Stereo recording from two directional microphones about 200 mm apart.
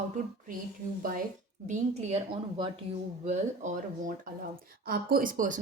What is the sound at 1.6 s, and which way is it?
Speech, 35° right (ahead or behind).